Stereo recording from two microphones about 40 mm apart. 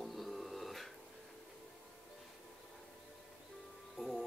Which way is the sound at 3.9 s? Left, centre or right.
Centre.